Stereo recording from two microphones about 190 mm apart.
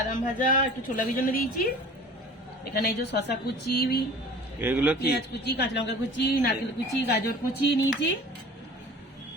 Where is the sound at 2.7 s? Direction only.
55° left (ahead or behind).